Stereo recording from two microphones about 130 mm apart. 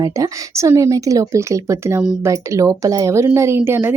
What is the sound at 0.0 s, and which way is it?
Speech, 25° right (ahead or behind).